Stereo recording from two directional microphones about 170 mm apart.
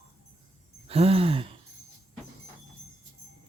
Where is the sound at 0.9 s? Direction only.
35° right (ahead or behind).